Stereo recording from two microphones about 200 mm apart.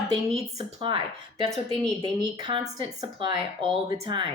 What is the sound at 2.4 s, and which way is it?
A woman's voice, 25° right (ahead or behind).